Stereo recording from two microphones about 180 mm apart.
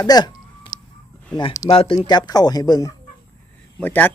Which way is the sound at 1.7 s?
30° left (ahead or behind).